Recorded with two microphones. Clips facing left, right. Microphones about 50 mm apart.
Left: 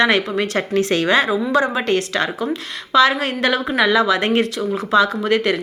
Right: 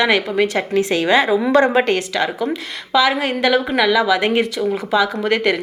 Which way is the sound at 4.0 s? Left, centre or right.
Centre.